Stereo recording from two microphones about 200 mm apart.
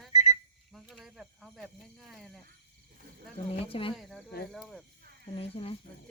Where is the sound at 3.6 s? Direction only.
30° left (ahead or behind).